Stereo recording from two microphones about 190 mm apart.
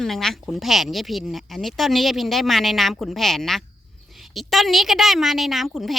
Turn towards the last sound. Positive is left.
turn(degrees=0)  # may be behind; listen again after turning